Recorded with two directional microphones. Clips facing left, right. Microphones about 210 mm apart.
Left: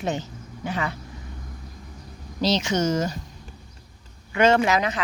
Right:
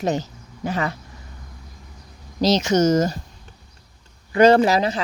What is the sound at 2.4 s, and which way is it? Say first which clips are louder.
Speech: right 5 dB; 40° right (ahead or behind).